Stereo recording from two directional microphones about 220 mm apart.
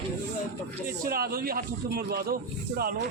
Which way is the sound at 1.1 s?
45° right (ahead or behind).